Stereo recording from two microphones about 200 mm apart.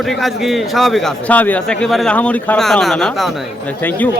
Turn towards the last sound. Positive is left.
turn(degrees=10)  # may be behind; listen again after turning